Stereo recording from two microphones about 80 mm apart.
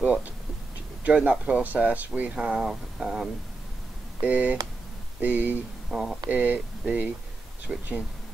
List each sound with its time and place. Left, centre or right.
0.0 s speech: centre
2.7 s a sound: centre
4.2 s speech: centre
5.9 s speech: centre
6.3 s speech: right